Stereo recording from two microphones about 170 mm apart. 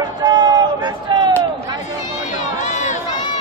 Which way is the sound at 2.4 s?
45° left (ahead or behind).